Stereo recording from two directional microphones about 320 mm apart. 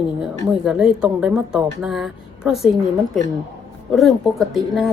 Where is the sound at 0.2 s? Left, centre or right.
Centre.